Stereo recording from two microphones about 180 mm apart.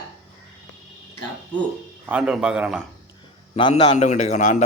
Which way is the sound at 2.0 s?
5° right (ahead or behind).